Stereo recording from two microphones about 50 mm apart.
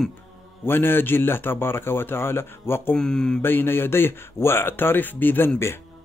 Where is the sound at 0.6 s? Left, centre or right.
Left.